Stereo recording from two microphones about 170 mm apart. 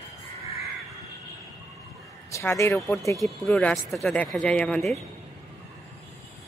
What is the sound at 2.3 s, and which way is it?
Speech, 15° left (ahead or behind).